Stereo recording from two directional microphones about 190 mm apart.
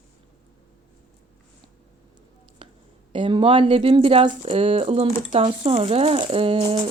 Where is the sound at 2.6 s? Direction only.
25° right (ahead or behind).